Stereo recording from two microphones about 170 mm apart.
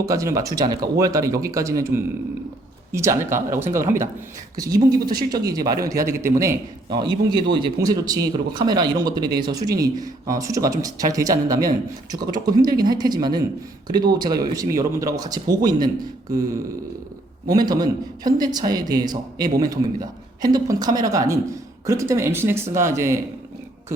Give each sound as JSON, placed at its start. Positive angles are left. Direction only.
{"t": 0.0, "sound": "speech", "side_deg": -20}
{"t": 17.5, "sound": "speech", "side_deg": -25}